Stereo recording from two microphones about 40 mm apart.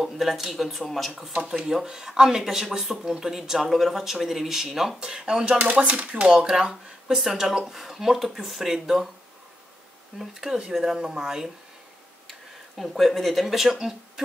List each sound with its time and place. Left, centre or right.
0.0 s speech: centre
1.7 s speech: centre
5.0 s speech: right
6.2 s speech: centre
10.1 s speech: centre
12.3 s speech: centre